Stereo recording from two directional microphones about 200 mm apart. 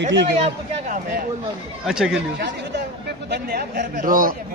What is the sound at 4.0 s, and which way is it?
Speech, 45° right (ahead or behind).